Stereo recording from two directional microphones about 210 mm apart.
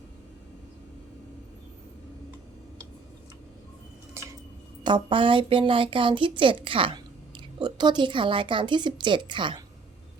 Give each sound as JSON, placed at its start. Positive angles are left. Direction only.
{"t": 4.8, "sound": "a woman's voice", "side_deg": -20}